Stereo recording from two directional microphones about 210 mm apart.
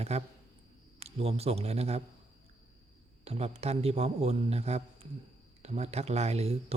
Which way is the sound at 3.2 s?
30° right (ahead or behind).